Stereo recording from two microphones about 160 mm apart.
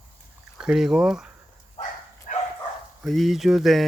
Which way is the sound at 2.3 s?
55° left (ahead or behind).